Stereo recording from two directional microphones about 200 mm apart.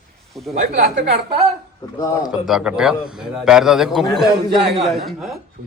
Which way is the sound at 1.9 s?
20° left (ahead or behind).